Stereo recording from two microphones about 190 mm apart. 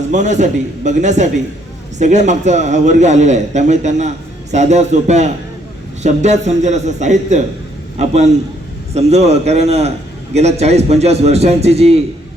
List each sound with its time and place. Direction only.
0.1 s a man's voice: 40° right (ahead or behind)